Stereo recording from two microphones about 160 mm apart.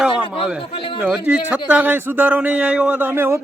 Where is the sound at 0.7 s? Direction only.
35° left (ahead or behind).